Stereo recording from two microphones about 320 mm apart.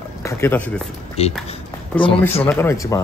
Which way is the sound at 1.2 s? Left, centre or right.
Centre.